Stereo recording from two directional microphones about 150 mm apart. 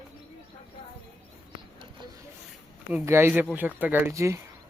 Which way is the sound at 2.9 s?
15° right (ahead or behind).